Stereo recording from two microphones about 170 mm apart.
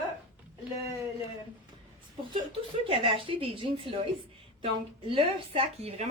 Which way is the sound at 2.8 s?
30° right (ahead or behind).